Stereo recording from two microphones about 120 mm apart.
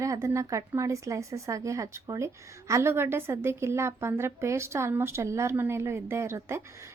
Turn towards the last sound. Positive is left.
turn(degrees=-20)  # may be behind; listen again after turning